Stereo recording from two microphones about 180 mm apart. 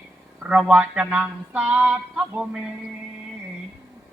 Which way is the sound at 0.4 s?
5° right (ahead or behind).